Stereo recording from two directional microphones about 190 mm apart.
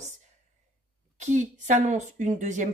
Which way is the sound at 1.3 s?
40° right (ahead or behind).